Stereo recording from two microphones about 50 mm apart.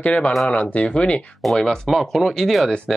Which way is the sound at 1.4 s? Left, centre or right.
Centre.